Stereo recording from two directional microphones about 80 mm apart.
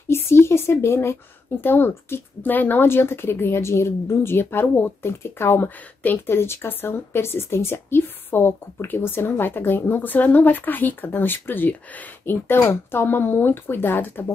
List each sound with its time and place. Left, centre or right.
0.1 s speech: left